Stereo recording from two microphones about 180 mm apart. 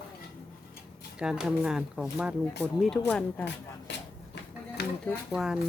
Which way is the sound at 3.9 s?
75° left (ahead or behind).